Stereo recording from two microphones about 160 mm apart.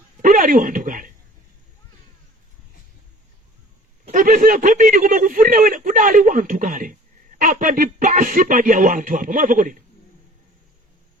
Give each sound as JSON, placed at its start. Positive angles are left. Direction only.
{"t": 0.2, "sound": "speech", "side_deg": -55}
{"t": 4.1, "sound": "a man's voice", "side_deg": -55}